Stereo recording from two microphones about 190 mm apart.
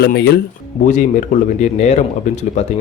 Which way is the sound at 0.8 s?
40° left (ahead or behind).